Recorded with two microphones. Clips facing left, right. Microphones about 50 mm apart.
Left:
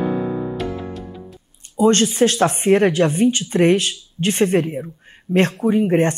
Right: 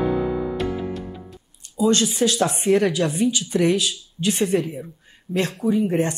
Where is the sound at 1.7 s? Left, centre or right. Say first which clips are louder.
Left 4 dB; left.